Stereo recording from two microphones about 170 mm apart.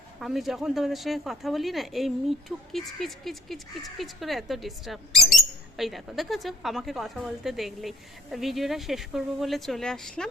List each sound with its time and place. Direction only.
0.2 s speech: centre (ahead or behind)